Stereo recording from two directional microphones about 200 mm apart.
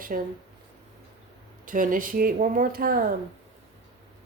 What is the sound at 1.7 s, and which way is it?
Speech, 40° right (ahead or behind).